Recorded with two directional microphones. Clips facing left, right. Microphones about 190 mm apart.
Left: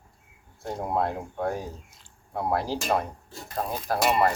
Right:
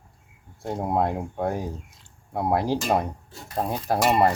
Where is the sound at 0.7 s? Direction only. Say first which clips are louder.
Right 3 dB; 15° right (ahead or behind).